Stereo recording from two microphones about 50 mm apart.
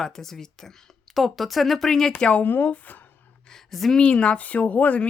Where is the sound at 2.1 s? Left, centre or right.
Left.